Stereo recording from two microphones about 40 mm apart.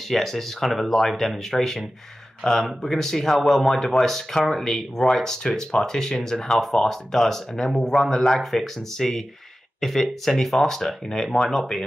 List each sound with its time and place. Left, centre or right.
0.1 s speech: centre